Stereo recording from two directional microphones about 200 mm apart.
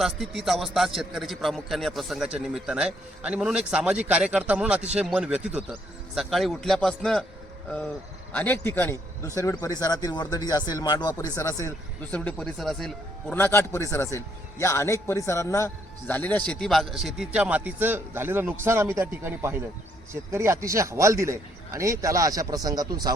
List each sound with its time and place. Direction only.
0.0 s a man's voice: centre (ahead or behind)
8.3 s a man's voice: 10° left (ahead or behind); by 23.1 s 20° right (ahead or behind)